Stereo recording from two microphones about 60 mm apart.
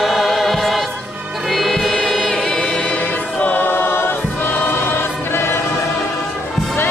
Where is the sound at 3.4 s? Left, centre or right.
Left.